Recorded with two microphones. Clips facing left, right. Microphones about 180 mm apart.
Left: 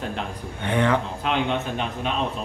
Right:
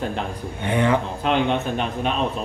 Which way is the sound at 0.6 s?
10° right (ahead or behind).